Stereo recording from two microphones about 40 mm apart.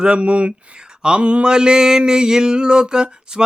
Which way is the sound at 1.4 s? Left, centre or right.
Right.